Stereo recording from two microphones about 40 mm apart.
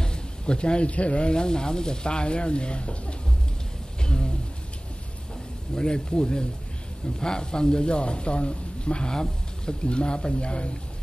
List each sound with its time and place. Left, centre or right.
0.0 s speech: left
4.0 s a sound: centre
5.8 s speech: centre